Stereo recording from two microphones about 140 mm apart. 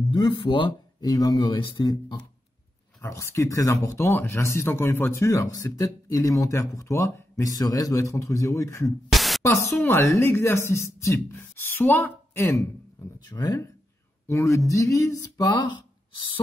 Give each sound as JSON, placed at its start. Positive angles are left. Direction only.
{"t": 0.1, "sound": "speech", "side_deg": 35}
{"t": 1.1, "sound": "speech", "side_deg": 25}
{"t": 3.0, "sound": "speech", "side_deg": 20}
{"t": 9.1, "sound": "a sound", "side_deg": 0}
{"t": 9.4, "sound": "speech", "side_deg": 20}